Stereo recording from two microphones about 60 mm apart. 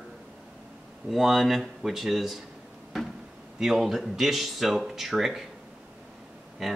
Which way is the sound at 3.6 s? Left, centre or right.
Centre.